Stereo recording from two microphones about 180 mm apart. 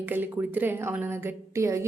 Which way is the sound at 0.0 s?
10° right (ahead or behind).